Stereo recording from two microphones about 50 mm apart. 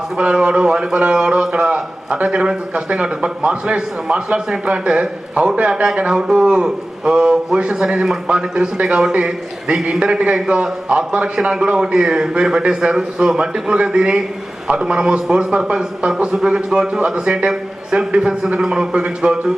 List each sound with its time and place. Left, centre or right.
0.2 s a man's voice: right
17.2 s a man's voice: right